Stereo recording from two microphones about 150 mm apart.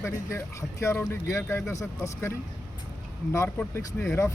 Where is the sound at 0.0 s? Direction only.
20° left (ahead or behind).